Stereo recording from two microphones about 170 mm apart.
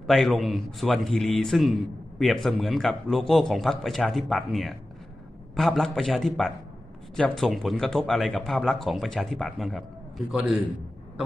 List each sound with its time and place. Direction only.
0.0 s a man's voice: centre (ahead or behind)